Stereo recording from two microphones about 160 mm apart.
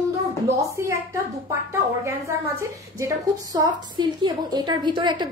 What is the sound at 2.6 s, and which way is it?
A woman's voice, 20° right (ahead or behind).